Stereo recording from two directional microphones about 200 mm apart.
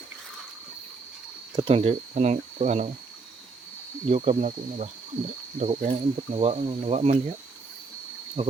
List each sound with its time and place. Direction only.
1.5 s speech: 25° right (ahead or behind)
4.0 s speech: 35° right (ahead or behind)
8.4 s speech: 30° right (ahead or behind)